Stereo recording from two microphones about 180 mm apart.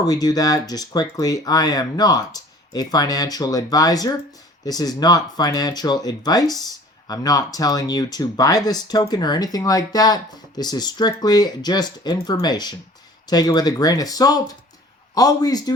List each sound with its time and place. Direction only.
0.0 s speech: 20° left (ahead or behind)